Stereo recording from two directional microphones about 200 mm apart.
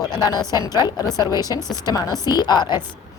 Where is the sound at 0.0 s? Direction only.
20° left (ahead or behind).